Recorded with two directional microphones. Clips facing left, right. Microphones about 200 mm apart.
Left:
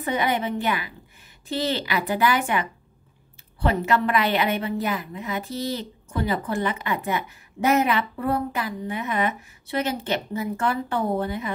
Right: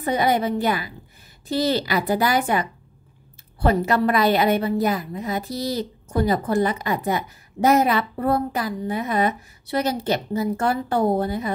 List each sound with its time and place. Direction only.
0.0 s a woman's voice: 40° right (ahead or behind)